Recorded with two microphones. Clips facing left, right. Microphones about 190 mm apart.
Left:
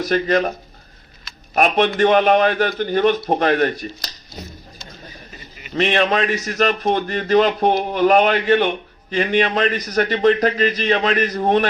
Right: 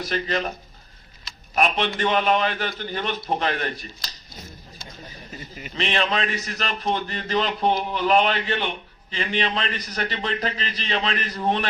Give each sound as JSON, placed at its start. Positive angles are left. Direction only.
{"t": 0.0, "sound": "a man's voice", "side_deg": 45}
{"t": 1.5, "sound": "a man's voice", "side_deg": 50}
{"t": 5.7, "sound": "a man's voice", "side_deg": 45}